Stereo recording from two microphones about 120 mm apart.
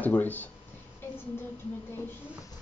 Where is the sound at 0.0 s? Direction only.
15° left (ahead or behind).